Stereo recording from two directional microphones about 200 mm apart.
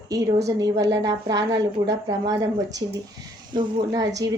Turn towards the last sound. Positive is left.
turn(degrees=-20)  # may be behind; listen again after turning